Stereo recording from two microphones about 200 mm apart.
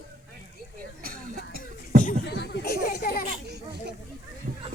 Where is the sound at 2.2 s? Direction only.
60° left (ahead or behind).